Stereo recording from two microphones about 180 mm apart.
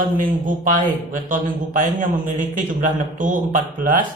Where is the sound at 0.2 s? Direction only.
45° right (ahead or behind).